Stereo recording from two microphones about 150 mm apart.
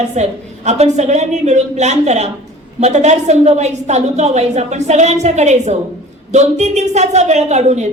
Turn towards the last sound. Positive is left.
turn(degrees=-50)  # may be behind; listen again after turning